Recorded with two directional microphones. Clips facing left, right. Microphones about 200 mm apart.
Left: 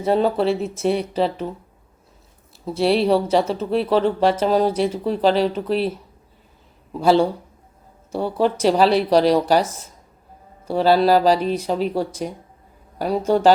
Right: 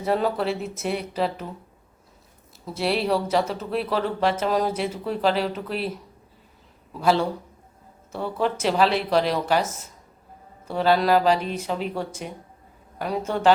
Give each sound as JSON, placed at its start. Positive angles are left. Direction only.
{"t": 0.0, "sound": "speech", "side_deg": 30}
{"t": 2.6, "sound": "speech", "side_deg": 30}
{"t": 7.0, "sound": "speech", "side_deg": 30}